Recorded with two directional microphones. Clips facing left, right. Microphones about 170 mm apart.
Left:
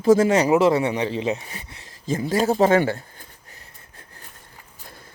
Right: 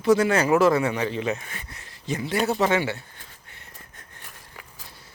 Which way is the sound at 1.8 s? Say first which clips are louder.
Left 4 dB; 40° left (ahead or behind).